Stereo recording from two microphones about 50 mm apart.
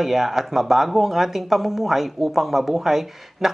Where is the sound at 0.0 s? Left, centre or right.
Centre.